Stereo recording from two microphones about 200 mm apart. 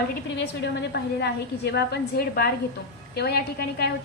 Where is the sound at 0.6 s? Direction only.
55° left (ahead or behind).